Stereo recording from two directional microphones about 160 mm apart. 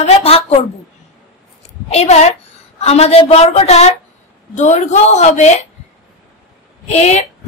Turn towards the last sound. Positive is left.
turn(degrees=45)  # may be behind; listen again after turning